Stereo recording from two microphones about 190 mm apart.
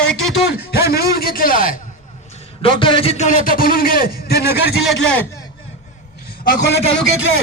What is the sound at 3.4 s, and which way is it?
Speech, 50° left (ahead or behind).